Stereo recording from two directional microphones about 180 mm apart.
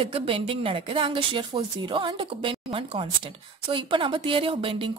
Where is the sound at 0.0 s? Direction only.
30° right (ahead or behind).